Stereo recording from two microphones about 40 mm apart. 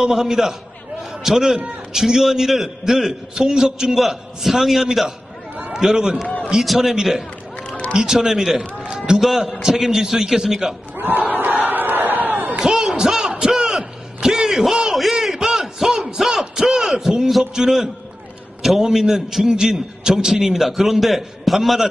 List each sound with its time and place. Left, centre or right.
0.0 s a man's voice: centre
6.6 s a man's voice: centre
7.5 s run: left
7.9 s a man's voice: centre
8.9 s run: centre
9.2 s a man's voice: centre
11.0 s battle cry: right
12.5 s a sound: centre
17.4 s a man's voice: centre